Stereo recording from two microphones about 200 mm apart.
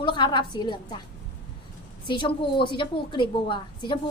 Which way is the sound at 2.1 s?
25° left (ahead or behind).